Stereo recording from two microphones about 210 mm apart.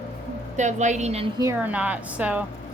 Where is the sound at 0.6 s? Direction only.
35° right (ahead or behind).